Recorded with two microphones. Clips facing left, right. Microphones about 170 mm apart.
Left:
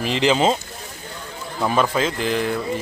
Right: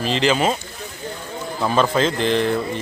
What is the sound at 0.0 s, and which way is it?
Speech, 15° left (ahead or behind).